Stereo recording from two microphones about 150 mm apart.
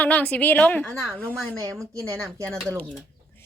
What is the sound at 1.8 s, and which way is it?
Speech, 20° right (ahead or behind).